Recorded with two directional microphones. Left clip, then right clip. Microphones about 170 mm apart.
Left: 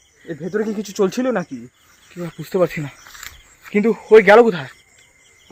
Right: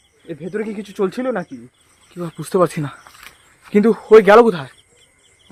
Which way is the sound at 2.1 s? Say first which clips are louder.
Right 3 dB; 30° right (ahead or behind).